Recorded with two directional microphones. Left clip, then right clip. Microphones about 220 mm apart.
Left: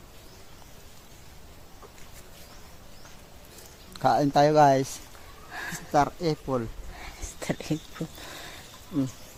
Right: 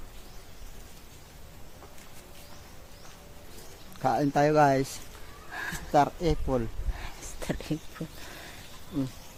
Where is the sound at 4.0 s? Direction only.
25° left (ahead or behind).